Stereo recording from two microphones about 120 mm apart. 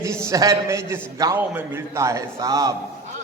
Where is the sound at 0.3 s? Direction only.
25° right (ahead or behind).